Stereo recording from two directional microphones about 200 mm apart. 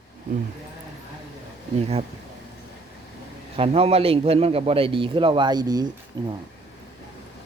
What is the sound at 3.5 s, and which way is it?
A man's voice, 30° right (ahead or behind).